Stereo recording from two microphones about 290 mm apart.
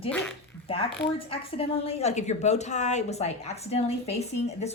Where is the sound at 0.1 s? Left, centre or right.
Centre.